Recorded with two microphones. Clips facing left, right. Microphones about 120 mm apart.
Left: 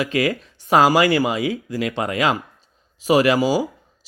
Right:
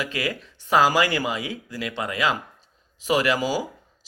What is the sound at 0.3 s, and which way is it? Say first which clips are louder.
Speech: left 4 dB; 15° left (ahead or behind).